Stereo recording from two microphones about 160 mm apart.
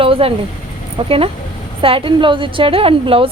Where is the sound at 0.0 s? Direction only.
35° right (ahead or behind).